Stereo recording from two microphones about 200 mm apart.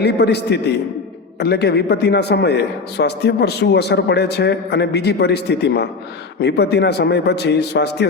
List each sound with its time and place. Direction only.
0.0 s a man's voice: 55° left (ahead or behind)